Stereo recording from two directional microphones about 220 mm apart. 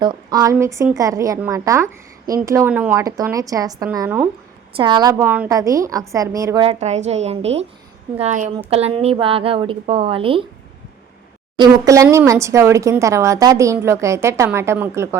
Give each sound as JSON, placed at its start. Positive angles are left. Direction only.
{"t": 0.0, "sound": "a woman's voice", "side_deg": -20}
{"t": 6.7, "sound": "a woman's voice", "side_deg": -30}
{"t": 12.0, "sound": "a woman's voice", "side_deg": -15}